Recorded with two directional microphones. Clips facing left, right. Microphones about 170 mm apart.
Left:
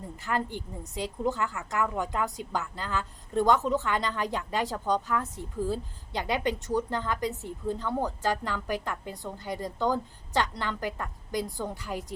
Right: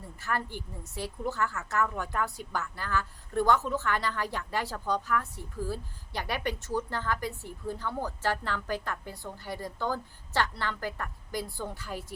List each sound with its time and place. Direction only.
0.2 s a woman's voice: 20° left (ahead or behind)